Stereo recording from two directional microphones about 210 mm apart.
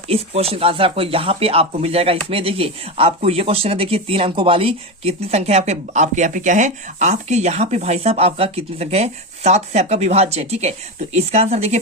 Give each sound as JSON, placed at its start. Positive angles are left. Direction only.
{"t": 0.1, "sound": "speech", "side_deg": -25}